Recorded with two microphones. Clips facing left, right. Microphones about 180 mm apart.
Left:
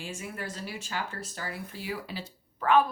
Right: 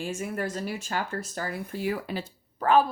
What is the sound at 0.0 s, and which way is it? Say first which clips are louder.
A woman's voice: right 7 dB; 45° right (ahead or behind).